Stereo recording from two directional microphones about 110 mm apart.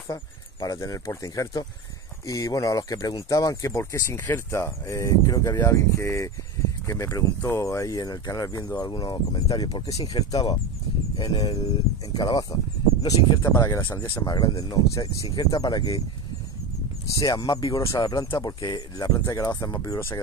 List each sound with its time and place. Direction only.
0.1 s speech: 30° left (ahead or behind)
17.1 s speech: 30° left (ahead or behind)